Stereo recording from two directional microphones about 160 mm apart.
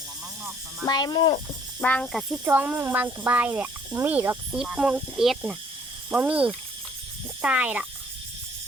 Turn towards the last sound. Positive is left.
turn(degrees=-10)  # may be behind; listen again after turning